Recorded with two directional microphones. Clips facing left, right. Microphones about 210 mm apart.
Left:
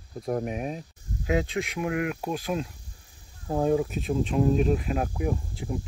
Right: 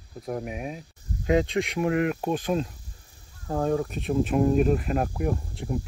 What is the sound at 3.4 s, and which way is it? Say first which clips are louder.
Speech: left 2 dB; 10° left (ahead or behind).